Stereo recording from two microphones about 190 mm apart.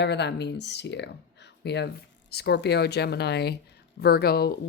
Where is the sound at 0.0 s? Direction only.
65° left (ahead or behind).